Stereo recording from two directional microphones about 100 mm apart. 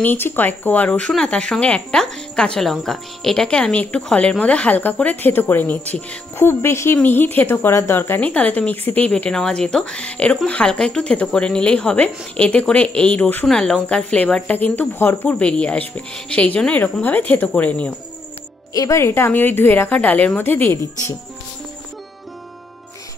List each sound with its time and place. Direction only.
0.0 s speech: 20° left (ahead or behind)
13.5 s speech: 5° left (ahead or behind)
18.7 s a woman's voice: 35° left (ahead or behind)